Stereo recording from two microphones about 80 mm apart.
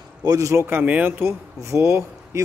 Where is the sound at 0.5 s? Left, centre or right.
Right.